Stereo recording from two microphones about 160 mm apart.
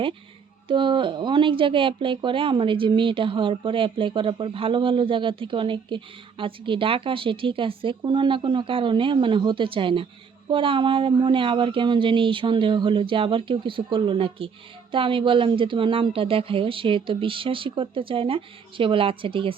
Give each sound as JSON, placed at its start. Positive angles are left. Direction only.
{"t": 0.7, "sound": "speech", "side_deg": -30}